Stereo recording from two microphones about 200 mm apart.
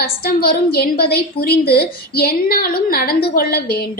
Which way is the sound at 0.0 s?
50° left (ahead or behind).